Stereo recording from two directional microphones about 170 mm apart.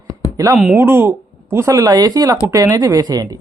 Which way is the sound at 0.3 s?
20° right (ahead or behind).